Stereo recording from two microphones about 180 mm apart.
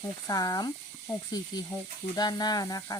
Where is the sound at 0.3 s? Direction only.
20° left (ahead or behind).